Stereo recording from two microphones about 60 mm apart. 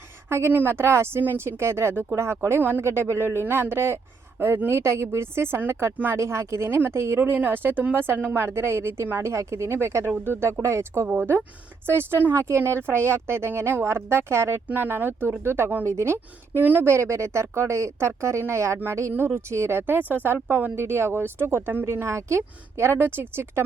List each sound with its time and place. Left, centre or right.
0.3 s a woman's voice: right
2.6 s speech: right
2.8 s a woman's voice: right
6.1 s speech: right
9.2 s a woman's voice: right
11.0 s speech: right
11.9 s a woman's voice: right
14.7 s a woman's voice: right
16.6 s speech: right
16.8 s a woman's voice: right
19.1 s speech: right
20.7 s speech: right
22.0 s a woman's voice: right